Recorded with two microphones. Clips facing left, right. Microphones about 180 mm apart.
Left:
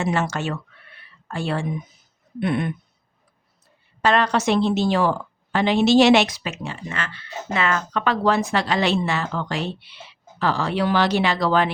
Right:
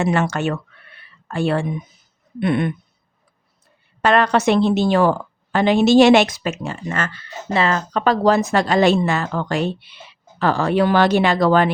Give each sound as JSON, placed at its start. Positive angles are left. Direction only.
{"t": 0.0, "sound": "speech", "side_deg": -60}
{"t": 2.4, "sound": "a sound", "side_deg": -70}
{"t": 4.0, "sound": "a woman's voice", "side_deg": -60}